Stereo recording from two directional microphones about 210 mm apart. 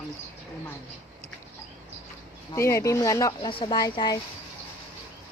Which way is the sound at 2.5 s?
15° left (ahead or behind).